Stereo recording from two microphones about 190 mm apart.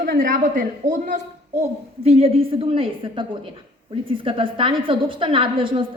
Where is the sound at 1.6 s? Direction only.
30° right (ahead or behind).